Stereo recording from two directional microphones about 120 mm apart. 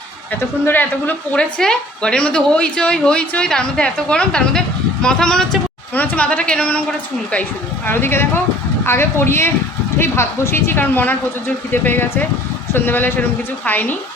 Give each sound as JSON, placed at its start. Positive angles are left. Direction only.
{"t": 0.6, "sound": "a woman's voice", "side_deg": 15}
{"t": 7.9, "sound": "a woman's voice", "side_deg": 20}